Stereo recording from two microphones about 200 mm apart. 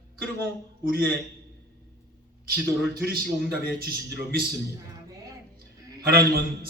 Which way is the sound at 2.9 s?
50° right (ahead or behind).